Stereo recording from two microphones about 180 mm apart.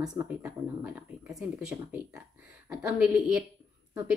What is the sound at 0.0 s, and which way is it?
Speech, 20° right (ahead or behind).